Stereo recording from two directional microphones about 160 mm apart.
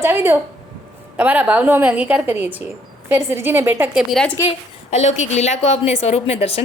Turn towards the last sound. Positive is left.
turn(degrees=40)  # may be behind; listen again after turning